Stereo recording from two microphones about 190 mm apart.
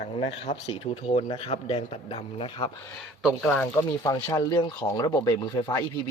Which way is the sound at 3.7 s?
20° left (ahead or behind).